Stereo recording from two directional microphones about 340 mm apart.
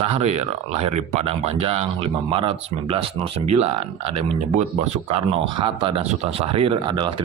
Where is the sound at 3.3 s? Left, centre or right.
Right.